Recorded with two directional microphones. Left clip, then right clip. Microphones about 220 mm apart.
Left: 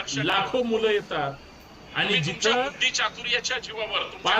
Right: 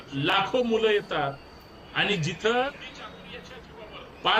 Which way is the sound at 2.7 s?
45° left (ahead or behind).